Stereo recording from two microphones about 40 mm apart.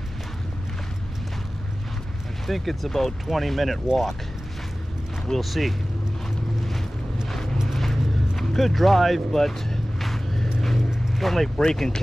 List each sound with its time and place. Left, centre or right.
2.4 s speech: centre
5.3 s speech: centre
7.7 s a sound: centre
11.1 s speech: centre